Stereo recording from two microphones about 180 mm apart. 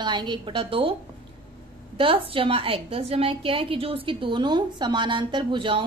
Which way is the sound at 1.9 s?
30° right (ahead or behind).